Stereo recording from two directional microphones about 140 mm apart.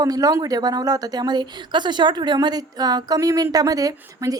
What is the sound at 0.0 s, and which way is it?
Speech, 25° right (ahead or behind).